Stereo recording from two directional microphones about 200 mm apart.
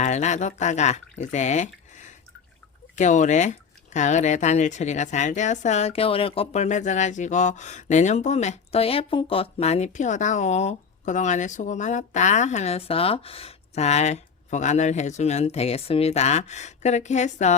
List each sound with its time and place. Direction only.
0.0 s speech: 35° left (ahead or behind)